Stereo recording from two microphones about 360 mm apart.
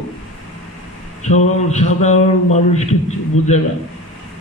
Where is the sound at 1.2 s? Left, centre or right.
Centre.